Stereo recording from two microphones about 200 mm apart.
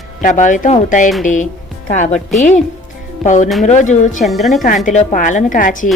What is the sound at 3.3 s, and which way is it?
Speech, 35° left (ahead or behind).